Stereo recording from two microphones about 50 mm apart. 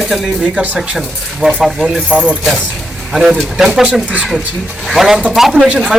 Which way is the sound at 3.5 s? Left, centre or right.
Centre.